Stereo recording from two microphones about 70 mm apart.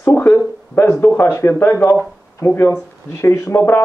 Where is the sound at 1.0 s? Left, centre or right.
Left.